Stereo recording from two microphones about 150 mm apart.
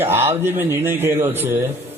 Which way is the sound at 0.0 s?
15° right (ahead or behind).